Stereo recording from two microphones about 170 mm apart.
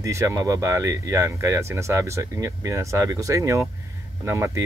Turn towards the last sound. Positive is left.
turn(degrees=-15)  # may be behind; listen again after turning